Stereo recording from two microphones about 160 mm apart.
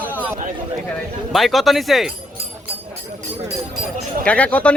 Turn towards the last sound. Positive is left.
turn(degrees=10)  # may be behind; listen again after turning